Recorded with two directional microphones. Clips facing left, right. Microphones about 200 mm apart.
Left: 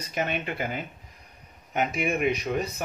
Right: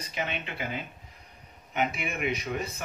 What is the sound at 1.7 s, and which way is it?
Speech, 40° left (ahead or behind).